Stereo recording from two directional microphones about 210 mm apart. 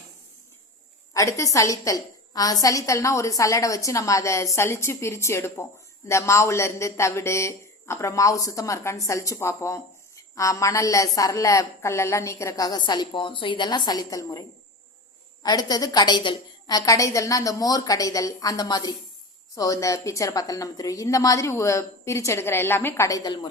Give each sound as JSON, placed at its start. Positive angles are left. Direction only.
{"t": 1.1, "sound": "a man's voice", "side_deg": 15}
{"t": 15.4, "sound": "a man's voice", "side_deg": 20}